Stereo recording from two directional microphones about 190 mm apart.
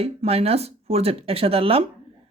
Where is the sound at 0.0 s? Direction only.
30° right (ahead or behind).